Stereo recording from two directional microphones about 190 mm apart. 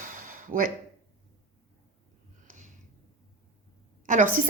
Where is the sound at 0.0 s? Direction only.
45° right (ahead or behind).